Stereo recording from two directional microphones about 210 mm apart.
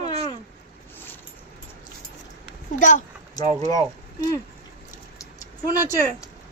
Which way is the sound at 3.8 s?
15° left (ahead or behind).